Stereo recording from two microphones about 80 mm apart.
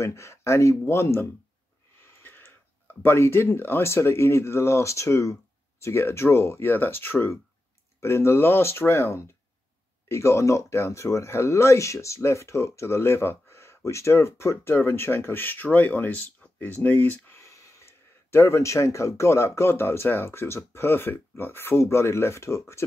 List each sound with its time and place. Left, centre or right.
0.0 s speech: left
2.2 s speech: left
17.4 s speech: left